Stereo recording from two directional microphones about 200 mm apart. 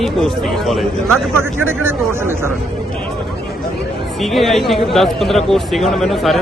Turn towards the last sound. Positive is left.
turn(degrees=0)  # may be behind; listen again after turning